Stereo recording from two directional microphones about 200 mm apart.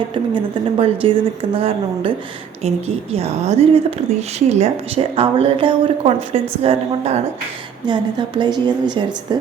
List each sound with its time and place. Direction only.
0.1 s a woman's voice: 25° right (ahead or behind)